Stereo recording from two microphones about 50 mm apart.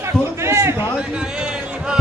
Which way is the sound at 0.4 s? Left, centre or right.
Right.